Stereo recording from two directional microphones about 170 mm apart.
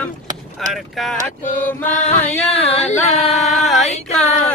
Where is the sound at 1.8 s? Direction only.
45° left (ahead or behind).